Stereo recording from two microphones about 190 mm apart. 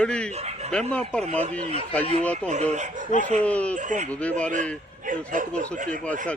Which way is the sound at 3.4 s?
5° left (ahead or behind).